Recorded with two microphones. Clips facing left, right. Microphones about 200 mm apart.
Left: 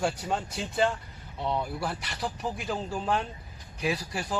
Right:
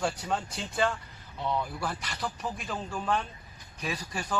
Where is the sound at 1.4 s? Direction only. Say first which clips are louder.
Left 1 dB; 25° left (ahead or behind).